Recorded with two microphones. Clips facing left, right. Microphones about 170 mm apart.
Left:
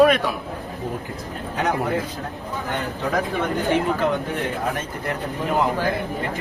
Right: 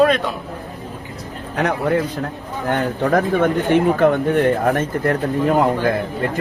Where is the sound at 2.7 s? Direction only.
55° right (ahead or behind).